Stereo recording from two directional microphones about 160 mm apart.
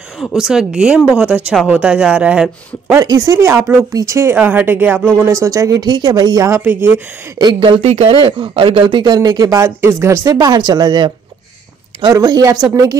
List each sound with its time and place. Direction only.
0.2 s speech: centre (ahead or behind)
3.0 s speech: 20° right (ahead or behind)
7.8 s speech: 40° right (ahead or behind); by 13.0 s 20° right (ahead or behind)